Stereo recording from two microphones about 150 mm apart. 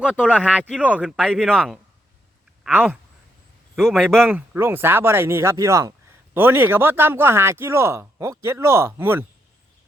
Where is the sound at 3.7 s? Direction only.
Centre (ahead or behind).